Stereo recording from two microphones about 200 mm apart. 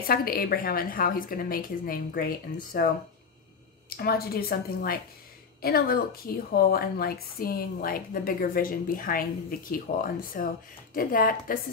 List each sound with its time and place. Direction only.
0.0 s a woman's voice: 50° left (ahead or behind)
3.9 s a woman's voice: 50° left (ahead or behind)